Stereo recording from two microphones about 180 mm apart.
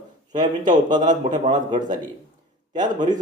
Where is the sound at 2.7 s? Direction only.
25° right (ahead or behind).